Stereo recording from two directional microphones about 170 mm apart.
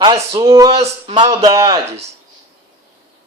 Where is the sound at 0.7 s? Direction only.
35° right (ahead or behind).